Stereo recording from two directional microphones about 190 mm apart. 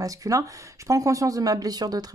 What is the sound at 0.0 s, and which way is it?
Speech, 15° right (ahead or behind).